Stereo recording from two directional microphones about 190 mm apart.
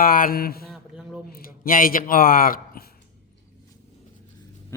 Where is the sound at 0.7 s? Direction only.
5° right (ahead or behind).